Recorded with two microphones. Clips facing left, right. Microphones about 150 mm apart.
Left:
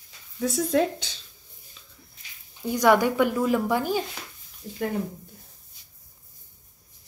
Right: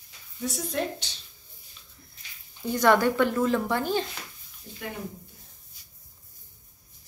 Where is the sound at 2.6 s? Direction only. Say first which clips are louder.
Left 1 dB; 10° left (ahead or behind).